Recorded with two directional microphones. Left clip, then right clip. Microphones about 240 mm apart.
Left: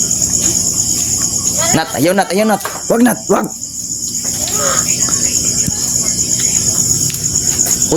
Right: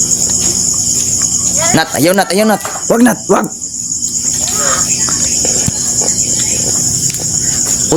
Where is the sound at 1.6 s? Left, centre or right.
Centre.